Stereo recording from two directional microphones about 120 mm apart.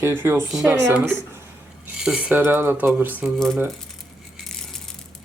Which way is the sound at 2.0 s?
10° right (ahead or behind).